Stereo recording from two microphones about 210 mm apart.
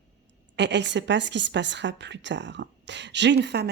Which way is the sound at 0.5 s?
55° right (ahead or behind).